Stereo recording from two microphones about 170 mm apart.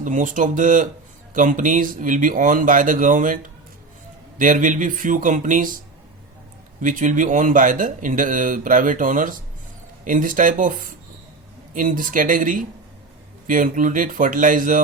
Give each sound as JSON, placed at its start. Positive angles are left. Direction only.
{"t": 0.0, "sound": "speech", "side_deg": -50}
{"t": 6.8, "sound": "speech", "side_deg": -50}